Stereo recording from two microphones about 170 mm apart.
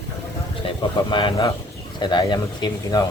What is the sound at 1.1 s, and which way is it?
Speech, 30° left (ahead or behind).